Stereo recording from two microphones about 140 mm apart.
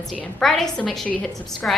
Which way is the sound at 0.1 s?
5° left (ahead or behind).